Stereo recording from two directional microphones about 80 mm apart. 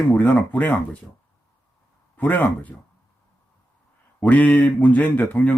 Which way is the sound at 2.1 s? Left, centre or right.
Left.